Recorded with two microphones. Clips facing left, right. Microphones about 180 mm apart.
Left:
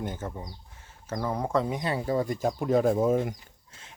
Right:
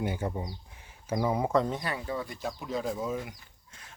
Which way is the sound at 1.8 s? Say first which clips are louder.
Left 5 dB; 25° left (ahead or behind).